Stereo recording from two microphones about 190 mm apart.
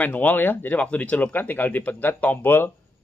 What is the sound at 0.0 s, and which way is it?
Speech, 10° left (ahead or behind).